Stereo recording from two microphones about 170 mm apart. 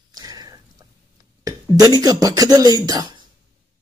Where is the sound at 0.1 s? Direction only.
20° right (ahead or behind).